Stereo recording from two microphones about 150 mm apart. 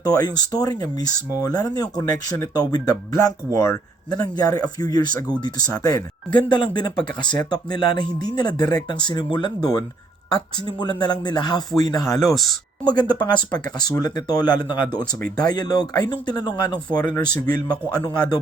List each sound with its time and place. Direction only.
0.0 s speech: 25° left (ahead or behind)
12.2 s speech: centre (ahead or behind)
12.8 s speech: 30° left (ahead or behind)